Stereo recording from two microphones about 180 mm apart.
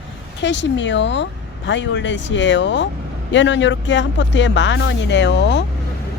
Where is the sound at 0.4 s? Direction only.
85° left.